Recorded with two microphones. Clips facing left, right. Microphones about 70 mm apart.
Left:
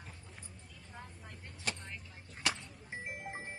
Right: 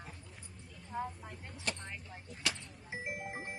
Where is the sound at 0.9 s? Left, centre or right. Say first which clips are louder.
Right 11 dB; centre.